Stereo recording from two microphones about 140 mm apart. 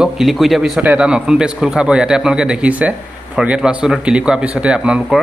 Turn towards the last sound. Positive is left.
turn(degrees=-5)  # may be behind; listen again after turning